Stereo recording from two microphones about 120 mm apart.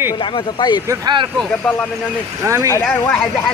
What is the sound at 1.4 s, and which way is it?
Speech, 10° left (ahead or behind).